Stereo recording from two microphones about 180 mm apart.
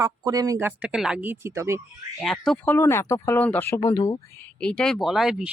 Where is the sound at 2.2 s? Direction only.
Centre (ahead or behind).